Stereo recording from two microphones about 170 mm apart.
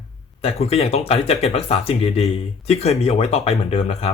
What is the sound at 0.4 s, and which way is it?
Speech, 35° left (ahead or behind).